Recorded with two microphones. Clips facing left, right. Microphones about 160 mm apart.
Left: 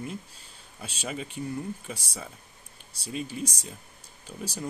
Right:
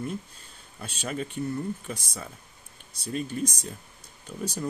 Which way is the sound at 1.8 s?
10° left (ahead or behind).